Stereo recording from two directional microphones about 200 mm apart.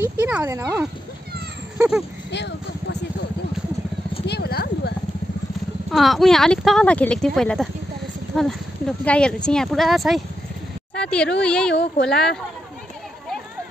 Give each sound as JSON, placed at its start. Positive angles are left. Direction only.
{"t": 0.0, "sound": "speech", "side_deg": -10}
{"t": 1.8, "sound": "speech", "side_deg": -5}
{"t": 2.3, "sound": "a sound", "side_deg": 60}
{"t": 4.3, "sound": "horse", "side_deg": 55}
{"t": 5.9, "sound": "a woman's voice", "side_deg": 0}